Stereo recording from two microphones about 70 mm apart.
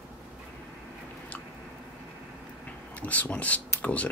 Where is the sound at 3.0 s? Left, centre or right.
Left.